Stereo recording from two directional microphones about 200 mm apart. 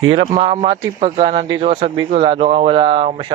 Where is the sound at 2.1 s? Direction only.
30° right (ahead or behind).